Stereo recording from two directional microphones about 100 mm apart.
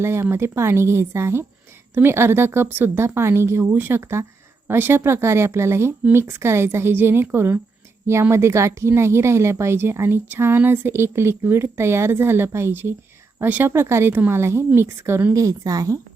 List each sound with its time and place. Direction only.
0.0 s speech: 25° right (ahead or behind)